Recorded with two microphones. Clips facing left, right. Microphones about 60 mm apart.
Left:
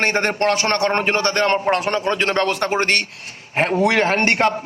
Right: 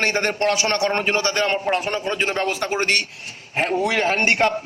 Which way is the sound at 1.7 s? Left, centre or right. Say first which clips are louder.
Left 3 dB; left.